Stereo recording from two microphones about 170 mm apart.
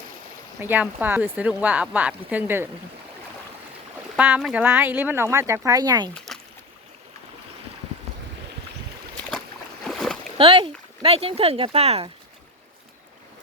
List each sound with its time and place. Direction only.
0.6 s speech: 10° right (ahead or behind)
4.2 s speech: 5° right (ahead or behind); by 6.1 s 20° right (ahead or behind)
6.1 s a sound: 5° left (ahead or behind)
9.8 s boat: centre (ahead or behind)
10.3 s speech: 30° right (ahead or behind)